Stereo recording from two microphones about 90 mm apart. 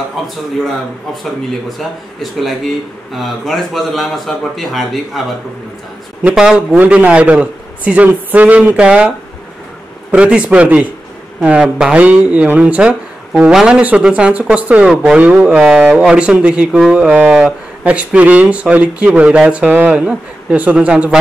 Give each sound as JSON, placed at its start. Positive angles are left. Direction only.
{"t": 2.4, "sound": "speech", "side_deg": 0}
{"t": 6.3, "sound": "speech", "side_deg": -5}
{"t": 10.1, "sound": "speech", "side_deg": -15}